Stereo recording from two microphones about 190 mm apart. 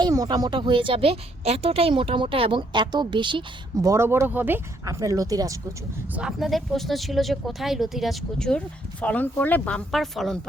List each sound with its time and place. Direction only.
0.0 s speech: 20° right (ahead or behind)
6.1 s speech: 5° right (ahead or behind)